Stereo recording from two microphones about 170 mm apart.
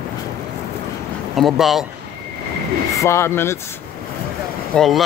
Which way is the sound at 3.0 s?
15° left (ahead or behind).